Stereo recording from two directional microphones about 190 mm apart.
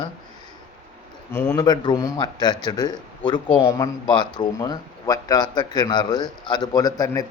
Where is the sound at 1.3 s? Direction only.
10° left (ahead or behind).